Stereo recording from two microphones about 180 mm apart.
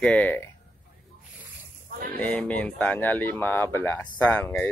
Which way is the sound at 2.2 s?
10° left (ahead or behind).